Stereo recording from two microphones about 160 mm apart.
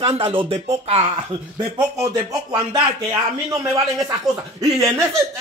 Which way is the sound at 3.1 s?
20° right (ahead or behind).